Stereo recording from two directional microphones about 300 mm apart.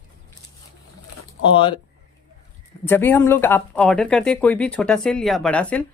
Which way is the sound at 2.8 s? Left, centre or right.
Centre.